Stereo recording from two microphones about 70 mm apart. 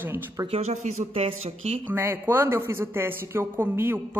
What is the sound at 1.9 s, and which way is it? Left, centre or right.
Speech, right.